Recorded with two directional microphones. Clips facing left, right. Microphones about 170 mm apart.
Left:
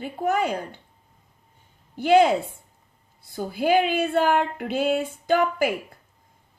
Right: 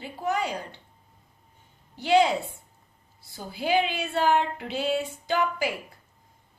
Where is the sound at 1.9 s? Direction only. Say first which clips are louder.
Left 4 dB; 50° left (ahead or behind).